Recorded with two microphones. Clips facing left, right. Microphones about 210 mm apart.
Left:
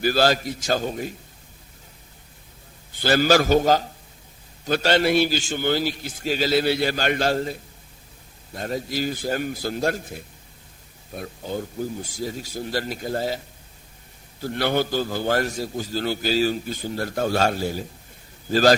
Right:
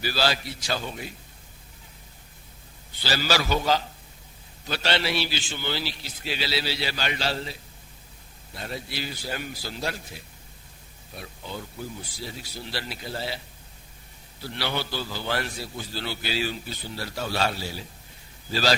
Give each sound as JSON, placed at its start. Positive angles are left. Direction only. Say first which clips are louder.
{"t": 0.0, "sound": "a man's voice", "louder": "left 7 dB", "side_deg": 50}
{"t": 2.9, "sound": "a man's voice", "louder": "left 9 dB", "side_deg": 50}
{"t": 14.4, "sound": "a man's voice", "louder": "left 8 dB", "side_deg": 50}